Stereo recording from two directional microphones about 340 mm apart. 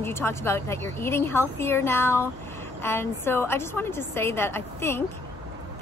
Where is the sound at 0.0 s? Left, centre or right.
Centre.